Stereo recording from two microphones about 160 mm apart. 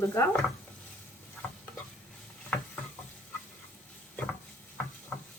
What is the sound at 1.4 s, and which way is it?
Stir, 5° left (ahead or behind).